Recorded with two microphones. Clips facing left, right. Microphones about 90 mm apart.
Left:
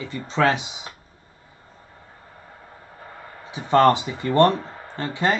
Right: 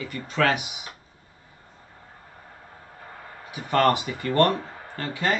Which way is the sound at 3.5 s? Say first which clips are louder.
Left 5 dB; 25° left (ahead or behind).